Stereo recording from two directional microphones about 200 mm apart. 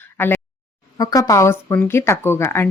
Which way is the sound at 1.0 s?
20° left (ahead or behind).